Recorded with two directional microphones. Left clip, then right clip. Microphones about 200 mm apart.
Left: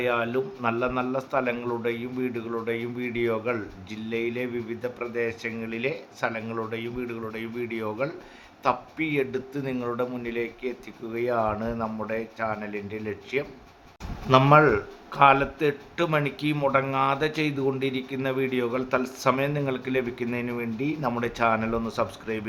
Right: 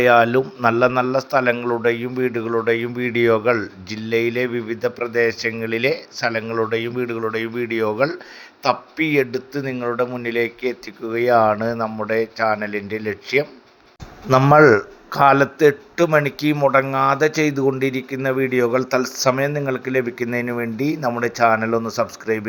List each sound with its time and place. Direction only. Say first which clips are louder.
0.0 s speech: right 12 dB; 30° right (ahead or behind)
14.5 s a man's voice: right 7 dB; 25° right (ahead or behind)